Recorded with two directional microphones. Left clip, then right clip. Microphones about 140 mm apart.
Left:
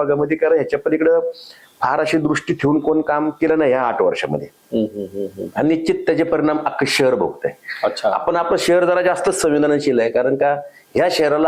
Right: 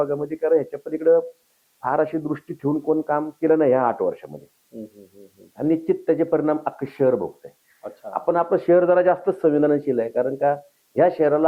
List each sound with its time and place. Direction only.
0.0 s a man's voice: 15° left (ahead or behind)
5.5 s a man's voice: 15° left (ahead or behind)